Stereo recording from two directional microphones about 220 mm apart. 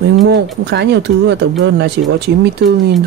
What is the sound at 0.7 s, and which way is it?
Speech, 50° right (ahead or behind).